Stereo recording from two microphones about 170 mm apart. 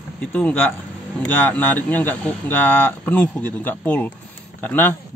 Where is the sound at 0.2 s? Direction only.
10° left (ahead or behind).